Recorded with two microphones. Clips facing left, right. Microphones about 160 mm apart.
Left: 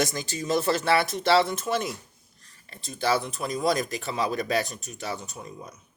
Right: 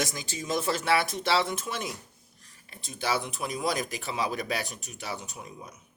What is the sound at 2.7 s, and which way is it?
Speech, 10° right (ahead or behind).